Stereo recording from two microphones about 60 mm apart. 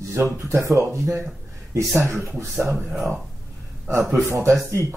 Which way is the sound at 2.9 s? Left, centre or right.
Centre.